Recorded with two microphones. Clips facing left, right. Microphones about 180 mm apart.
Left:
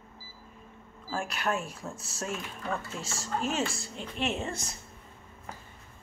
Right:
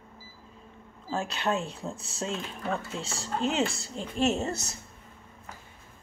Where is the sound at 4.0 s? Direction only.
40° right (ahead or behind).